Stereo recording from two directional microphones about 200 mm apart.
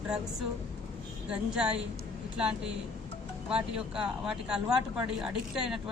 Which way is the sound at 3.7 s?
5° right (ahead or behind).